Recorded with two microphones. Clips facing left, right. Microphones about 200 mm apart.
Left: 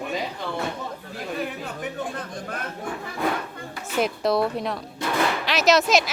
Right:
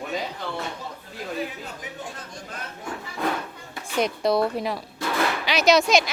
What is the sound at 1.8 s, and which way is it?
Speech, 55° left (ahead or behind).